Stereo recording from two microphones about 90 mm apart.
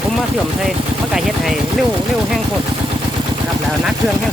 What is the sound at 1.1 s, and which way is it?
Speech, 5° right (ahead or behind).